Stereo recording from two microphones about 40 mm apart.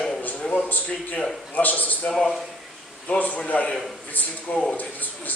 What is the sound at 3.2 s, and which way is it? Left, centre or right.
A man's voice, left.